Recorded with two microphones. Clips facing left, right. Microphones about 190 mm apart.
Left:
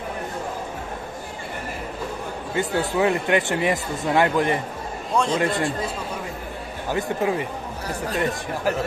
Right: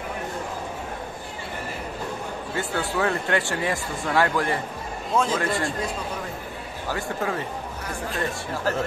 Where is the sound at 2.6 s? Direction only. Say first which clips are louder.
Left 4 dB; 15° left (ahead or behind).